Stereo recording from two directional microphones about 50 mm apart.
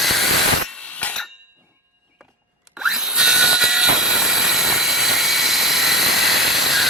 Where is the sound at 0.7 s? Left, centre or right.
Left.